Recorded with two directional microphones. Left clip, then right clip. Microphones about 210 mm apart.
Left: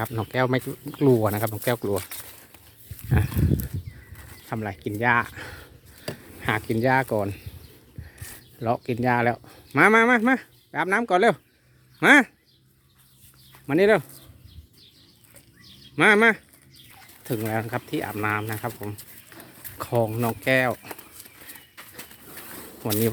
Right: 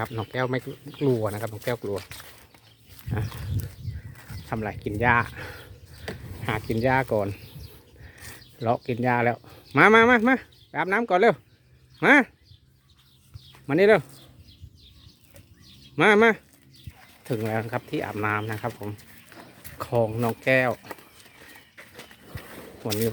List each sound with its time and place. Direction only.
0.0 s speech: 10° left (ahead or behind)
0.3 s speech: 25° left (ahead or behind)
3.1 s speech: 20° left (ahead or behind)
13.7 s speech: centre (ahead or behind)
16.0 s speech: 5° right (ahead or behind)
21.9 s a sound: 35° left (ahead or behind)